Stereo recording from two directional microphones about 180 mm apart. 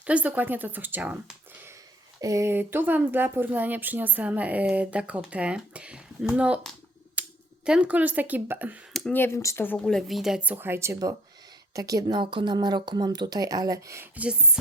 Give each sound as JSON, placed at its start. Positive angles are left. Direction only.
{"t": 0.0, "sound": "speech", "side_deg": -5}
{"t": 8.9, "sound": "a sound", "side_deg": 0}
{"t": 9.1, "sound": "speech", "side_deg": 15}
{"t": 9.7, "sound": "a woman's voice", "side_deg": 0}